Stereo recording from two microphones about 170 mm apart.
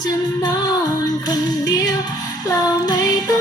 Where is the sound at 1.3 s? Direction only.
20° left (ahead or behind).